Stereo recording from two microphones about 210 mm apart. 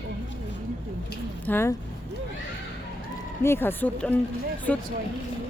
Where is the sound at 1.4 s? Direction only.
10° left (ahead or behind).